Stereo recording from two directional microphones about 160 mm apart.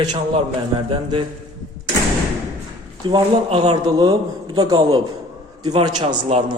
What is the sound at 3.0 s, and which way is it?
A man's voice, 30° right (ahead or behind).